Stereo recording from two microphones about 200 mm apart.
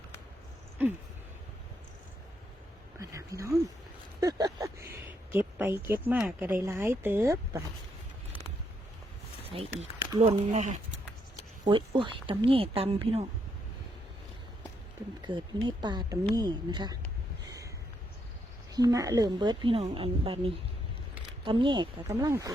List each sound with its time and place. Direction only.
0.8 s a woman's voice: 10° right (ahead or behind)
3.0 s a woman's voice: 15° right (ahead or behind)
9.4 s a sound: 30° right (ahead or behind)
10.2 s speech: 35° right (ahead or behind)
15.2 s speech: 25° right (ahead or behind)
18.7 s a woman's voice: 20° right (ahead or behind)